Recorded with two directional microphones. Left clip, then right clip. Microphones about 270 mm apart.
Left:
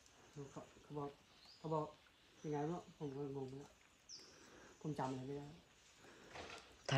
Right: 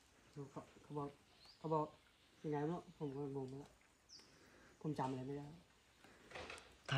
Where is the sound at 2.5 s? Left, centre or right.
Centre.